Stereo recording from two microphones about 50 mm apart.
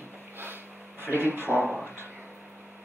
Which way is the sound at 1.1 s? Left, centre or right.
Right.